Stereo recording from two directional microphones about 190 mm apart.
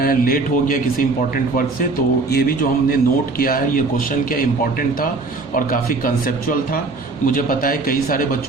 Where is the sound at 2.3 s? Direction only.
50° left (ahead or behind).